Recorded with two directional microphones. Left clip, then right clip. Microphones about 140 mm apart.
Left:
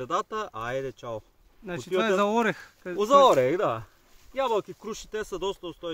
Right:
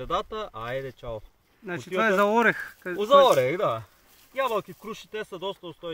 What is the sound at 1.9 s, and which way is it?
Speech, 10° left (ahead or behind).